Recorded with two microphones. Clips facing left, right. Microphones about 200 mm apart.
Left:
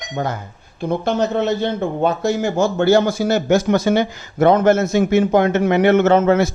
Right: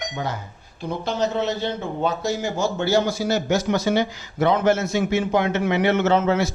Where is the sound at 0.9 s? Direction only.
55° left (ahead or behind).